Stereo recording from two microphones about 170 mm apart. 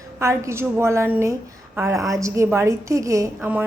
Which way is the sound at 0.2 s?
15° right (ahead or behind).